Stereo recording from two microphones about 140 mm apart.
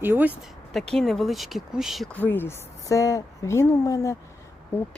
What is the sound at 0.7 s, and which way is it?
Speech, centre (ahead or behind).